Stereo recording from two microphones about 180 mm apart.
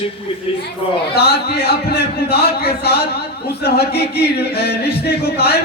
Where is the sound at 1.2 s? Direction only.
60° left (ahead or behind).